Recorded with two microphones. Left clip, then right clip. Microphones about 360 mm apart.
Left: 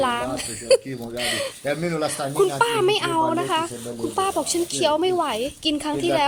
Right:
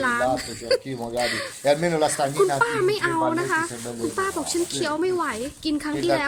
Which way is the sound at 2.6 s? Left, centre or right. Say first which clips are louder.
Left 2 dB; centre.